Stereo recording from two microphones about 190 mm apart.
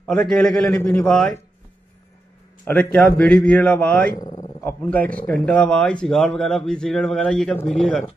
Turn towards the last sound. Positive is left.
turn(degrees=5)  # may be behind; listen again after turning